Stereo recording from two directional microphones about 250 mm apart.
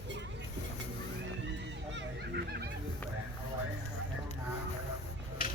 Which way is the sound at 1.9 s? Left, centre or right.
Right.